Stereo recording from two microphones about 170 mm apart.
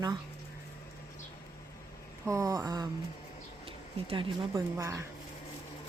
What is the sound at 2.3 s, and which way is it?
Speech, 20° right (ahead or behind).